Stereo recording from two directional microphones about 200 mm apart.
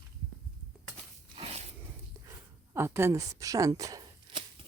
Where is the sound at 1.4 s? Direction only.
30° right (ahead or behind).